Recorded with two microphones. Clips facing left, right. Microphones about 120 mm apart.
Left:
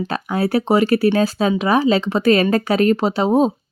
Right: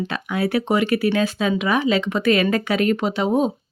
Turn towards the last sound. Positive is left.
turn(degrees=35)  # may be behind; listen again after turning